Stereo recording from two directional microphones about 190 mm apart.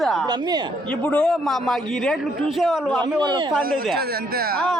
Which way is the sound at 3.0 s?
25° right (ahead or behind).